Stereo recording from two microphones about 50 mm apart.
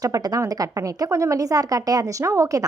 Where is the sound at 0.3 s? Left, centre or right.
Right.